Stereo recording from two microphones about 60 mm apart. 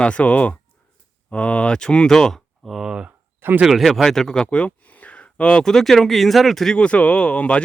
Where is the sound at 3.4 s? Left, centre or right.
Right.